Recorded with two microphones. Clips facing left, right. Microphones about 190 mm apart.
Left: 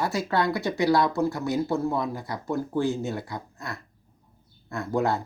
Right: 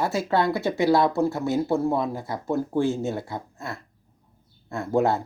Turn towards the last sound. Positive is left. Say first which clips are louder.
# right 3 dB
turn(degrees=-25)  # may be behind; listen again after turning